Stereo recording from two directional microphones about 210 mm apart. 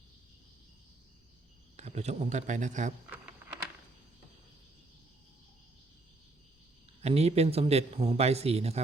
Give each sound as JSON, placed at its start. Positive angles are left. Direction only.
{"t": 1.7, "sound": "a man's voice", "side_deg": -30}
{"t": 3.1, "sound": "a sound", "side_deg": -5}
{"t": 7.0, "sound": "a man's voice", "side_deg": -30}